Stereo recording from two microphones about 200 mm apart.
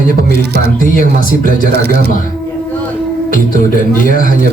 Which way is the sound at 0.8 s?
45° left (ahead or behind).